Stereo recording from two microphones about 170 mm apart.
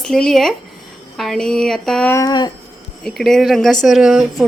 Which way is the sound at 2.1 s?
20° left (ahead or behind).